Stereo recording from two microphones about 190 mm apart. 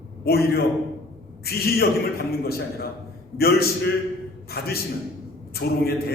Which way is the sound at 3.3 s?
55° left (ahead or behind).